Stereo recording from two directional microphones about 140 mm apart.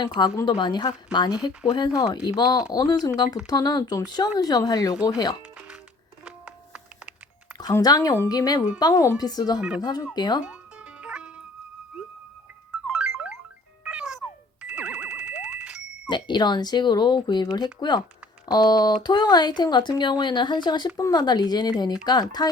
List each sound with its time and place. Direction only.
0.4 s speech: 30° left (ahead or behind)
5.5 s music: 10° right (ahead or behind)
7.6 s speech: 30° left (ahead or behind)
9.6 s speech: 10° right (ahead or behind)
9.8 s speech: 30° left (ahead or behind)
10.4 s music: 10° right (ahead or behind)
12.9 s music: 10° right (ahead or behind)
16.0 s speech: 35° left (ahead or behind)